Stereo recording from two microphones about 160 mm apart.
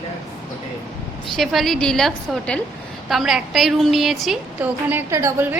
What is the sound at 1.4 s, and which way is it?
A woman's voice, centre (ahead or behind).